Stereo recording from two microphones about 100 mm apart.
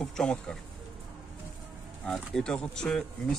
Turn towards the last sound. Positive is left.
turn(degrees=5)  # may be behind; listen again after turning